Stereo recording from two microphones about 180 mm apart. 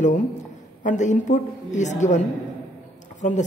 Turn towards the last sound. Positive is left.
turn(degrees=45)  # may be behind; listen again after turning